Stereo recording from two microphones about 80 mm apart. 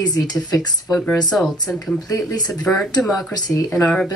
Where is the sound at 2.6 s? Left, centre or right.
Centre.